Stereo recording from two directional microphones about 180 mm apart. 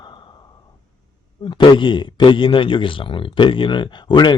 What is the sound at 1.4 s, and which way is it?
A man's voice, 25° left (ahead or behind).